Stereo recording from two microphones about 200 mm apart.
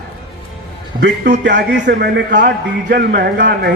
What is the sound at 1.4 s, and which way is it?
A man's voice, 65° right (ahead or behind).